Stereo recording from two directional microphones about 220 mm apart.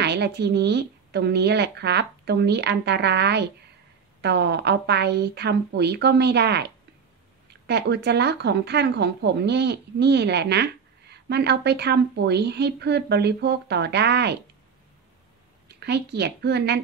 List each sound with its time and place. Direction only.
0.0 s a woman's voice: 50° right (ahead or behind)
15.8 s a woman's voice: 50° right (ahead or behind)